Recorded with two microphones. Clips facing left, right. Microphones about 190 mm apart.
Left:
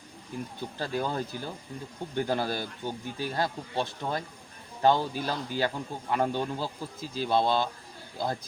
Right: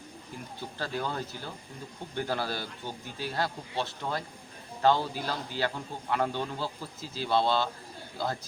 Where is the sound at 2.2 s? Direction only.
15° left (ahead or behind).